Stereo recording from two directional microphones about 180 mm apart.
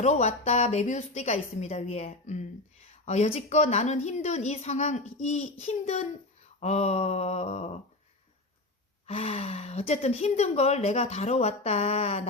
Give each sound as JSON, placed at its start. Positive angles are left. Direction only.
{"t": 0.0, "sound": "a woman's voice", "side_deg": 40}
{"t": 9.0, "sound": "a woman's voice", "side_deg": 35}